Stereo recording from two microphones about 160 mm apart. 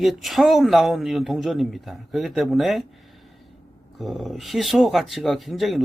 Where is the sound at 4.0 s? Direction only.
Centre (ahead or behind).